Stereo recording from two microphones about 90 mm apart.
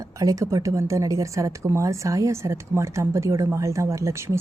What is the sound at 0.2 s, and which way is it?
A woman's voice, 40° right (ahead or behind).